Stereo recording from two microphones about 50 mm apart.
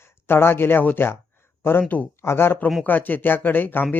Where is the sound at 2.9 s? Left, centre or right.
Left.